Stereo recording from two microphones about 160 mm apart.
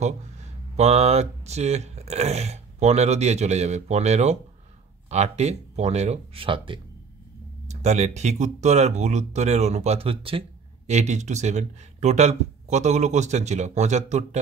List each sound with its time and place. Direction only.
0.7 s speech: 40° right (ahead or behind)
7.6 s speech: 45° right (ahead or behind)
10.9 s speech: 45° right (ahead or behind)